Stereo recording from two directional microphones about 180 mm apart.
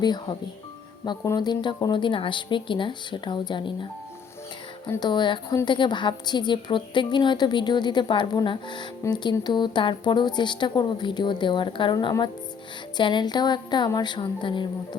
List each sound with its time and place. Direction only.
0.0 s a woman's voice: 25° left (ahead or behind)
4.9 s a woman's voice: 25° left (ahead or behind)